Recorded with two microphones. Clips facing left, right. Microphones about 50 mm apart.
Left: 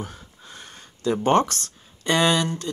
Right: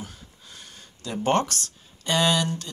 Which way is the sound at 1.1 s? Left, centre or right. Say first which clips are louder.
Left 3 dB; left.